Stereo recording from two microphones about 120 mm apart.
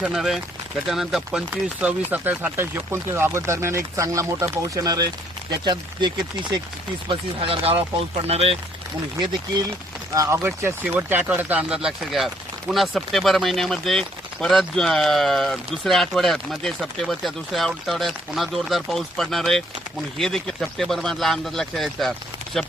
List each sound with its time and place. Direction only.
0.0 s speech: 5° right (ahead or behind); by 6.1 s 40° right (ahead or behind)
7.1 s speech: 50° right (ahead or behind)
10.2 s speech: 25° right (ahead or behind); by 22.7 s centre (ahead or behind)